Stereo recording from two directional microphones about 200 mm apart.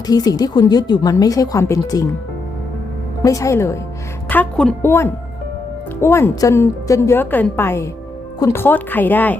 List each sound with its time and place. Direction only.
0.1 s a woman's voice: 20° left (ahead or behind)
3.2 s a woman's voice: 15° left (ahead or behind)